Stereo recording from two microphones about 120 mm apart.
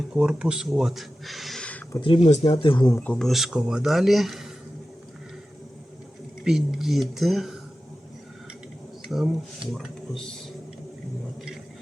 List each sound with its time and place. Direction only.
0.1 s speech: 5° right (ahead or behind)
2.0 s speech: 50° left (ahead or behind)
2.3 s speech: 60° left (ahead or behind)
3.0 s speech: 5° left (ahead or behind)
6.4 s speech: 5° right (ahead or behind)
9.0 s speech: 5° right (ahead or behind)